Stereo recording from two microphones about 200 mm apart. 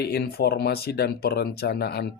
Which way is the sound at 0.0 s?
55° left (ahead or behind).